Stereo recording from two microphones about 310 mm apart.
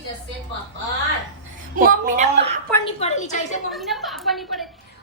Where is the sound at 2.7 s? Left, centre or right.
Centre.